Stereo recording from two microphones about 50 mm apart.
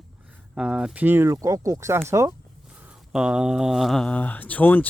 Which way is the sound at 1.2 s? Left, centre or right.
Right.